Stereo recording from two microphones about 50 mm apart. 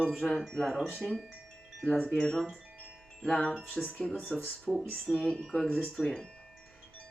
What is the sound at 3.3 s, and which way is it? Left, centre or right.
Speech, left.